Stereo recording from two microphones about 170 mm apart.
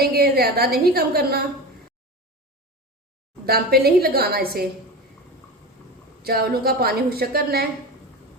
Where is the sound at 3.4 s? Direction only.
65° right (ahead or behind).